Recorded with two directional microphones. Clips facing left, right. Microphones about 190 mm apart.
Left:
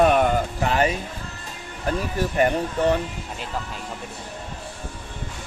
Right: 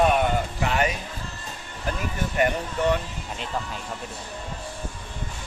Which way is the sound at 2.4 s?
30° left (ahead or behind).